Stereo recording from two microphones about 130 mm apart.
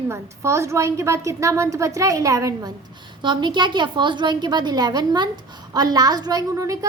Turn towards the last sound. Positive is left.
turn(degrees=-25)  # may be behind; listen again after turning